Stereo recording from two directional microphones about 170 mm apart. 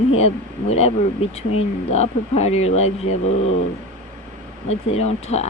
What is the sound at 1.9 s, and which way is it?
Speech, 40° left (ahead or behind).